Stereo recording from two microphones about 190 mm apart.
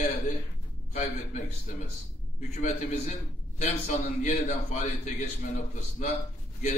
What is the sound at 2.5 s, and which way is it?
A man's voice, 35° left (ahead or behind).